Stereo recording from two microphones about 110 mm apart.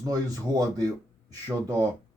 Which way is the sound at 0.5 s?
35° right (ahead or behind).